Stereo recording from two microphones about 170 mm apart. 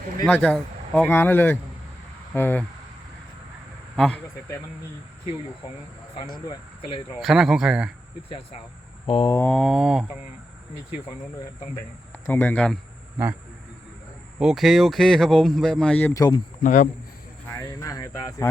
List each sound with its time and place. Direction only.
0.3 s speech: 10° left (ahead or behind)
3.9 s speech: 5° left (ahead or behind)
6.4 s speech: 25° left (ahead or behind)
7.2 s speech: centre (ahead or behind)
9.0 s speech: 30° left (ahead or behind)
9.3 s speech: 10° left (ahead or behind)
12.3 s speech: 10° left (ahead or behind)
14.3 s speech: centre (ahead or behind)
16.6 s a man's voice: 50° left (ahead or behind)
17.6 s speech: 20° left (ahead or behind)